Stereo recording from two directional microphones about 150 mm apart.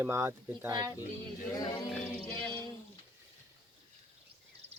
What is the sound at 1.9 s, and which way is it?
Music, 5° left (ahead or behind).